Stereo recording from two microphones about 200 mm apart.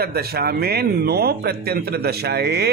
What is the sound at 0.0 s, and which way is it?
Speech, 50° right (ahead or behind).